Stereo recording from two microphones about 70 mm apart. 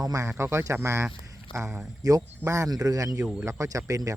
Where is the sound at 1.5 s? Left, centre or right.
Right.